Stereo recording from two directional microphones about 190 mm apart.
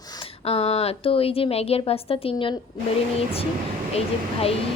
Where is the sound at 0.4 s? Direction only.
30° left (ahead or behind).